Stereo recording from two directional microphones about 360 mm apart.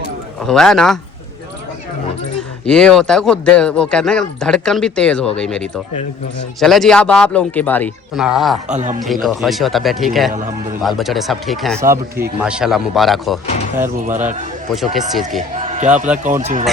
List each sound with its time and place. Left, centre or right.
0.4 s speech: centre
2.6 s speech: centre
8.7 s speech: centre
9.0 s speech: centre
15.5 s basketball bounce: centre
16.4 s speech: centre